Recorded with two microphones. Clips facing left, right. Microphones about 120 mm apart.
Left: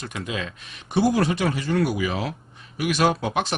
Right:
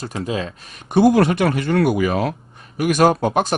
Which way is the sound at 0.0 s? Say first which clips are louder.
Right 6 dB; 35° right (ahead or behind).